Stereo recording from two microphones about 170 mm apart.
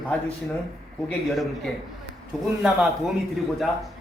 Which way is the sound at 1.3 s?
Centre (ahead or behind).